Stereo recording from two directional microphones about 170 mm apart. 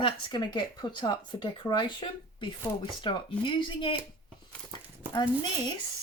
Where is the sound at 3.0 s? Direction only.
30° left (ahead or behind).